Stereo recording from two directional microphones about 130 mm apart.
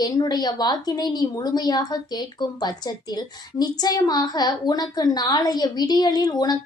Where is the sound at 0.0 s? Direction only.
30° left (ahead or behind).